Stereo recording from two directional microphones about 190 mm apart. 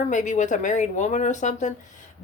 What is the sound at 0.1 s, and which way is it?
Speech, 40° left (ahead or behind).